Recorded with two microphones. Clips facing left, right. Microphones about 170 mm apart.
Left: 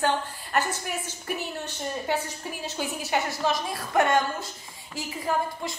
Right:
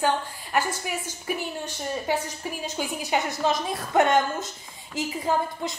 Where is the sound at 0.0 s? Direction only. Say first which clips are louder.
Right 1 dB; 10° right (ahead or behind).